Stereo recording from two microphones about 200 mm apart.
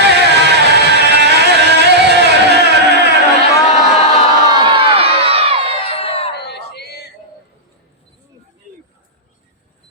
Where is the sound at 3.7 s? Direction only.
35° left (ahead or behind).